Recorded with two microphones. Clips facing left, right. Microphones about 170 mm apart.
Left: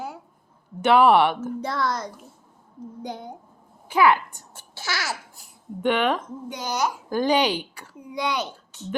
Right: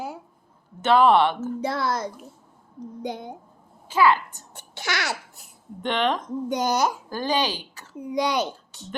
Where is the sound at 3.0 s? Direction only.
15° right (ahead or behind).